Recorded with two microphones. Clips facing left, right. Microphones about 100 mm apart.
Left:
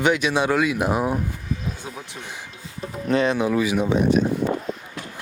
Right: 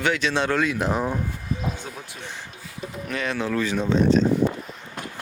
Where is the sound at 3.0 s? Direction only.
25° left (ahead or behind).